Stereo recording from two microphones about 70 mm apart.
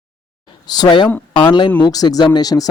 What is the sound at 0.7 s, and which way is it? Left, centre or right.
Speech, left.